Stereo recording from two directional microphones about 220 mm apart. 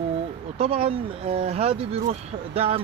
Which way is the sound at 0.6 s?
25° right (ahead or behind).